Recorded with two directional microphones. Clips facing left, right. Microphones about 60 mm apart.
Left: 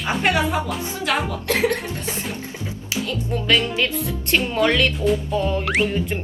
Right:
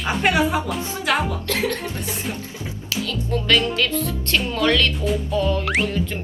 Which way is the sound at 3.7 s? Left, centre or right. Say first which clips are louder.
Right 1 dB; centre.